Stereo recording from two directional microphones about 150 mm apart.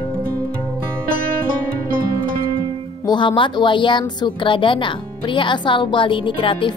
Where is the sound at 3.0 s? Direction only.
30° left (ahead or behind).